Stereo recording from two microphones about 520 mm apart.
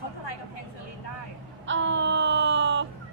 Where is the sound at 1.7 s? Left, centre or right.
Right.